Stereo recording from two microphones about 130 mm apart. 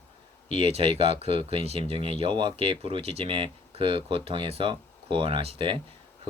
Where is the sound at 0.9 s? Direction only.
50° right (ahead or behind).